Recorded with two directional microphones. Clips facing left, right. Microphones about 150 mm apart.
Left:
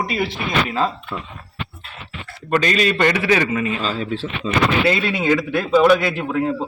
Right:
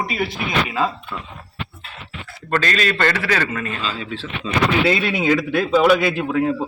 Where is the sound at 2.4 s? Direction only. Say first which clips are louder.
Left 3 dB; 15° left (ahead or behind).